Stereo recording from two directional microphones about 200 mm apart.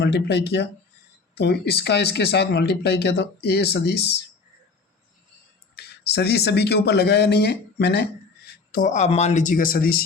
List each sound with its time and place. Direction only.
0.0 s speech: 55° left (ahead or behind)
5.7 s speech: 55° left (ahead or behind)
8.7 s speech: 40° left (ahead or behind)